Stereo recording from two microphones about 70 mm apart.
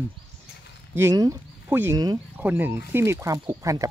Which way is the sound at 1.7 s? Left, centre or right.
Right.